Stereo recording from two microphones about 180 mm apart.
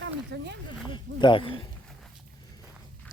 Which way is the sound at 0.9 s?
25° left (ahead or behind).